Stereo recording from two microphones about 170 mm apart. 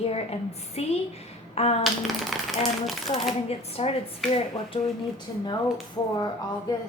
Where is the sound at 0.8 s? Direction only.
40° left (ahead or behind).